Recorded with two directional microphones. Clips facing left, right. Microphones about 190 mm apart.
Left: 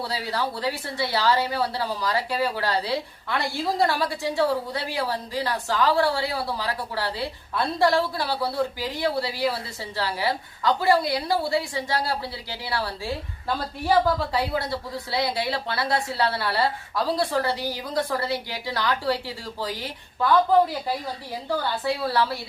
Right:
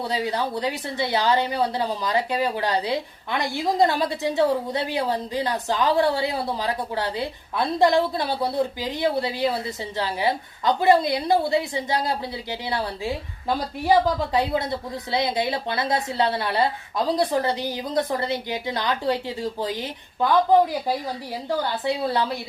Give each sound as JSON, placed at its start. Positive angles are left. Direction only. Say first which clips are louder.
{"t": 0.0, "sound": "a woman's voice", "louder": "right 3 dB", "side_deg": -20}